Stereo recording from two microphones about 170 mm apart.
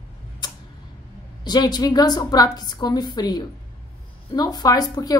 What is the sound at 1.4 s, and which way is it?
Speech, 25° left (ahead or behind).